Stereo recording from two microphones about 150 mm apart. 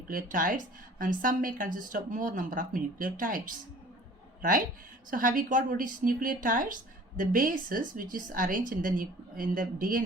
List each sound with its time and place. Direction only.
0.1 s a woman's voice: 65° right (ahead or behind)